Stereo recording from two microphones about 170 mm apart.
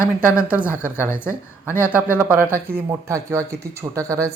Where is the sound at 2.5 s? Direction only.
65° right (ahead or behind).